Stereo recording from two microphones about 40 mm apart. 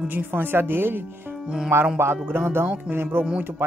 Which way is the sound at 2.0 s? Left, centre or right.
Right.